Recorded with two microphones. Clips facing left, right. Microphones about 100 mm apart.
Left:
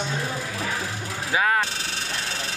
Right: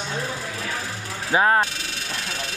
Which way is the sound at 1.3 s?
35° right (ahead or behind).